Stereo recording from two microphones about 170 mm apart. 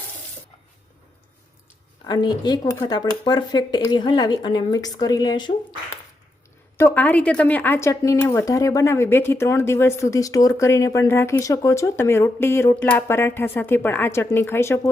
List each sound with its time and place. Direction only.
2.0 s speech: 25° left (ahead or behind)
6.7 s speech: 15° left (ahead or behind)